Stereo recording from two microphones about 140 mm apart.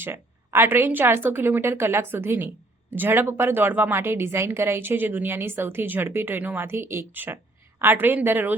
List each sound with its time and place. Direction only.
0.0 s a woman's voice: 15° right (ahead or behind)